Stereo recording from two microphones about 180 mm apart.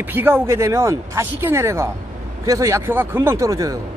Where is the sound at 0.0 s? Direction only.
10° right (ahead or behind).